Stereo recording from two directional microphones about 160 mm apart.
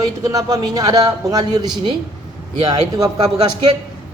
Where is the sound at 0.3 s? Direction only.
20° right (ahead or behind).